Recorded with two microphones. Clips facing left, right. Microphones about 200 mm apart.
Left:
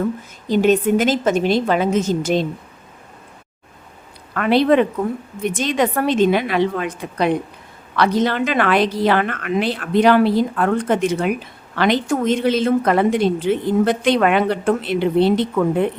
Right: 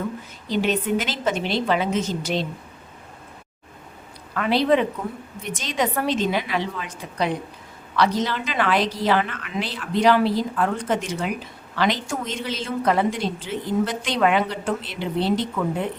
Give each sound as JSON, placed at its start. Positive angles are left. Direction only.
{"t": 0.4, "sound": "a woman's voice", "side_deg": 45}
{"t": 4.4, "sound": "a woman's voice", "side_deg": 60}